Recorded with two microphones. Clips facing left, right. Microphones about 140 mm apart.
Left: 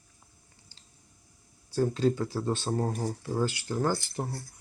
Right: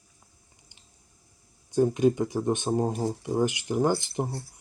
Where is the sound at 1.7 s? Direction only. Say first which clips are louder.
Right 4 dB; 15° right (ahead or behind).